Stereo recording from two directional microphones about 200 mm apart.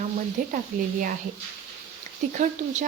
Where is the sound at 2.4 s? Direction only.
40° right (ahead or behind).